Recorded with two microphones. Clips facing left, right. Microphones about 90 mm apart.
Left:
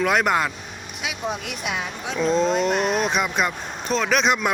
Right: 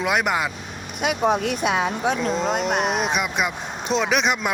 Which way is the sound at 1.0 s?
60° right (ahead or behind).